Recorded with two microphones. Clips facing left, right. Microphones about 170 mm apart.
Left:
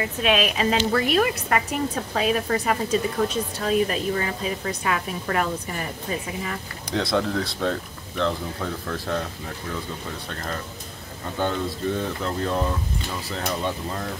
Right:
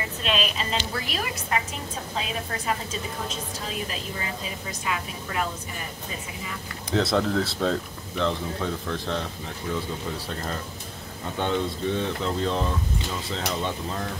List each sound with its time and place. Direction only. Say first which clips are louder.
0.2 s a woman's voice: left 6 dB; 60° left (ahead or behind)
6.9 s speech: right 1 dB; centre (ahead or behind)
10.2 s speech: even; 10° right (ahead or behind)
11.3 s speech: even; 5° left (ahead or behind)